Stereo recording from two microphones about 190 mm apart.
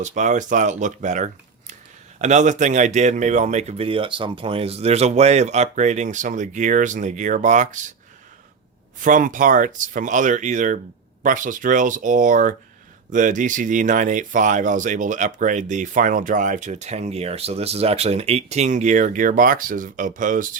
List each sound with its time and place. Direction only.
0.0 s speech: 40° right (ahead or behind)
9.0 s speech: 45° right (ahead or behind)